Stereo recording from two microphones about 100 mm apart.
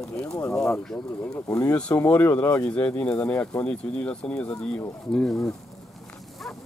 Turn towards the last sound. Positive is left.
turn(degrees=5)  # may be behind; listen again after turning